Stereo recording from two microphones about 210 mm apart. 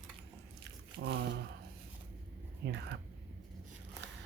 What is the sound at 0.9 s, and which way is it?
Squish, 55° right (ahead or behind).